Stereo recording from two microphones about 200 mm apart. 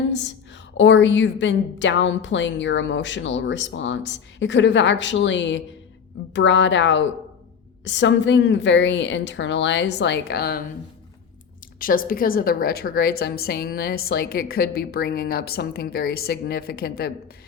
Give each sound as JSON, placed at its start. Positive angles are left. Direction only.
{"t": 0.1, "sound": "a woman's voice", "side_deg": 65}
{"t": 11.8, "sound": "a woman's voice", "side_deg": 45}